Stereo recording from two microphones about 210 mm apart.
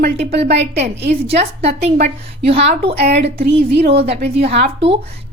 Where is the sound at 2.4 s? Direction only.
30° right (ahead or behind).